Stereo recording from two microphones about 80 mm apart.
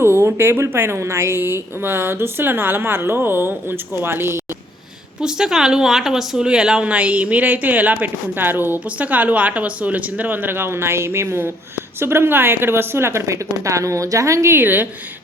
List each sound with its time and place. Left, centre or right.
0.0 s a woman's voice: right
5.2 s a woman's voice: centre; by 14.8 s right